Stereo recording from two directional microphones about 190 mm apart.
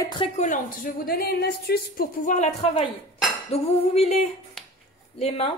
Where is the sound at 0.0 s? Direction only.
25° left (ahead or behind).